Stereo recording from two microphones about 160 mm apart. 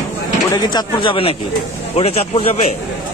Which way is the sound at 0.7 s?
35° left (ahead or behind).